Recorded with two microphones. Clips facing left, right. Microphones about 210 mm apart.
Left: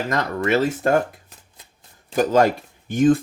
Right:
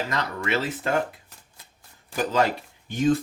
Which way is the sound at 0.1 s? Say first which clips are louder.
Left 6 dB; 45° left (ahead or behind).